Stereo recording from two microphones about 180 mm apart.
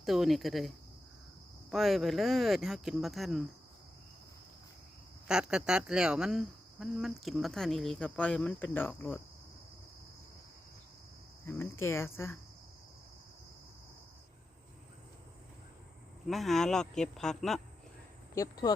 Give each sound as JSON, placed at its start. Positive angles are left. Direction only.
{"t": 0.0, "sound": "speech", "side_deg": 0}
{"t": 1.7, "sound": "speech", "side_deg": 0}
{"t": 5.3, "sound": "speech", "side_deg": -5}
{"t": 11.4, "sound": "speech", "side_deg": 15}
{"t": 16.2, "sound": "speech", "side_deg": 0}
{"t": 18.3, "sound": "speech", "side_deg": 20}